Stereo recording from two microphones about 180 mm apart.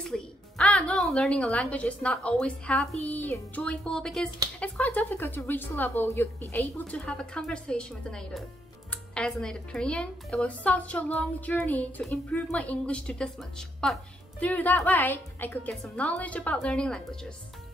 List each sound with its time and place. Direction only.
0.0 s a woman's voice: 5° left (ahead or behind)